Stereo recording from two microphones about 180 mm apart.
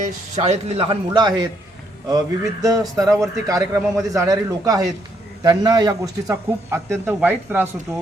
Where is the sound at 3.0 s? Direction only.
20° right (ahead or behind).